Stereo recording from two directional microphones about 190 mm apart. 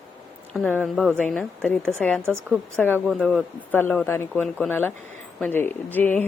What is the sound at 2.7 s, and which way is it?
Speech, 10° left (ahead or behind).